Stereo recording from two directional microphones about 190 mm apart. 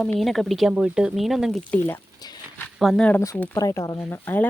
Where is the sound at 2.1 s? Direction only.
20° left (ahead or behind).